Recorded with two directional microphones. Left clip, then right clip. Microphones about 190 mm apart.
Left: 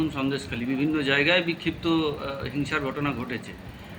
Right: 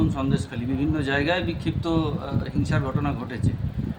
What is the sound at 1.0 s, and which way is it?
Speech, 35° right (ahead or behind).